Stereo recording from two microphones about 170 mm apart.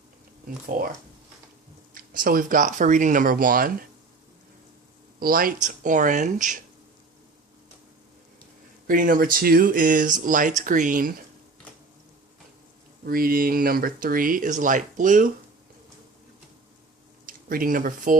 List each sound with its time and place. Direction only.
1.9 s speech: 55° right (ahead or behind)
5.2 s speech: 55° right (ahead or behind)
8.9 s speech: 55° right (ahead or behind)
13.1 s speech: 60° right (ahead or behind)
17.2 s speech: 55° right (ahead or behind)